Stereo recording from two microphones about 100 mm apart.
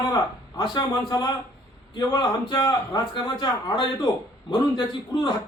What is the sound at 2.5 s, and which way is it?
A man's voice, 45° left (ahead or behind).